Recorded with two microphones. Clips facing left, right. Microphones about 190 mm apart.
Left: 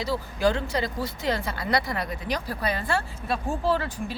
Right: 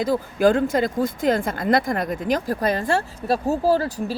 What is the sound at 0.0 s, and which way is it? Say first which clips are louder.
Speech: right 6 dB; 50° right (ahead or behind).